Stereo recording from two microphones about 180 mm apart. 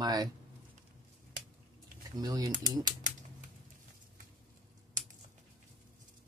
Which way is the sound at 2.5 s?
50° right (ahead or behind).